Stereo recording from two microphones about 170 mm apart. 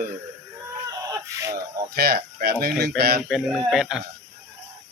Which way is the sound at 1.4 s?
20° right (ahead or behind).